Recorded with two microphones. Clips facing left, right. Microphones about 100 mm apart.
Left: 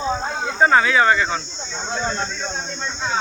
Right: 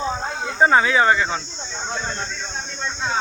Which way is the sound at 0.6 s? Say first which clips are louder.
Even; 20° right (ahead or behind).